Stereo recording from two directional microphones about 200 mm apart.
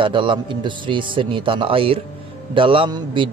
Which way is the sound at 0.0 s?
25° right (ahead or behind).